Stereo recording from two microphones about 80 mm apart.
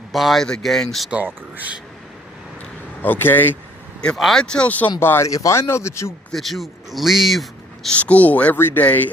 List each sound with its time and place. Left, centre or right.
0.1 s a man's voice: centre
1.1 s speech: centre
3.0 s speech: left
4.2 s speech: centre
4.9 s speech: left
5.3 s speech: left
6.3 s a man's voice: centre
7.9 s speech: centre